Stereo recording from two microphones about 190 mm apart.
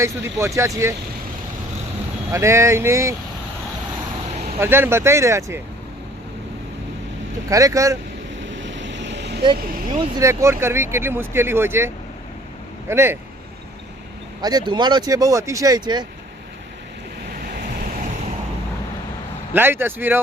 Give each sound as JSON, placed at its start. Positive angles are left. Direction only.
{"t": 0.0, "sound": "speech", "side_deg": -15}
{"t": 2.3, "sound": "speech", "side_deg": -15}
{"t": 4.6, "sound": "speech", "side_deg": -10}
{"t": 7.5, "sound": "speech", "side_deg": -15}
{"t": 8.4, "sound": "vehicle", "side_deg": -75}
{"t": 9.6, "sound": "speech", "side_deg": -50}
{"t": 10.0, "sound": "speech", "side_deg": -15}
{"t": 12.9, "sound": "speech", "side_deg": -10}
{"t": 14.4, "sound": "speech", "side_deg": -20}
{"t": 19.5, "sound": "speech", "side_deg": -10}